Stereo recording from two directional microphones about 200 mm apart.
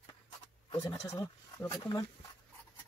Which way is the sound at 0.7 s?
15° left (ahead or behind).